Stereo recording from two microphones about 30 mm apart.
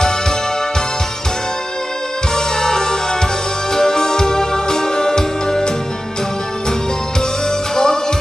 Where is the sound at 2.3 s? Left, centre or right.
Centre.